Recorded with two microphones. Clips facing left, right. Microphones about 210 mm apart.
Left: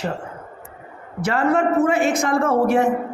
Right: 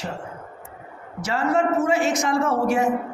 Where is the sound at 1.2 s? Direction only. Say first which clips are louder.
Left 3 dB; 60° left (ahead or behind).